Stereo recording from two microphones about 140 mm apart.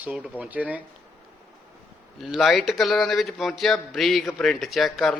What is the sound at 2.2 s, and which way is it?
A man's voice, centre (ahead or behind).